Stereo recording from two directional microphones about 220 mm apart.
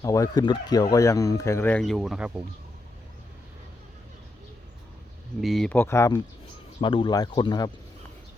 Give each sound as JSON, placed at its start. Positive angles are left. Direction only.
{"t": 0.0, "sound": "speech", "side_deg": 15}
{"t": 5.4, "sound": "speech", "side_deg": 0}